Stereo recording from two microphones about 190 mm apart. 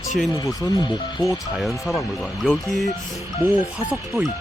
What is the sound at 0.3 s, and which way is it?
Speech, 20° left (ahead or behind).